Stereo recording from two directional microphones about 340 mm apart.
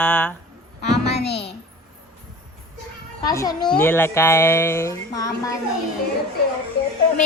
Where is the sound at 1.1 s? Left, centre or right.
Left.